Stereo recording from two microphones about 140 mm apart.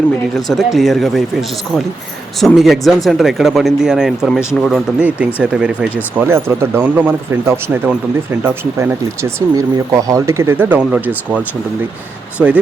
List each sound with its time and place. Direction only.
0.3 s speech: centre (ahead or behind)